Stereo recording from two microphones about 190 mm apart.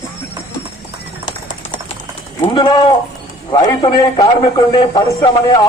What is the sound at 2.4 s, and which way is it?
Speech, 25° left (ahead or behind).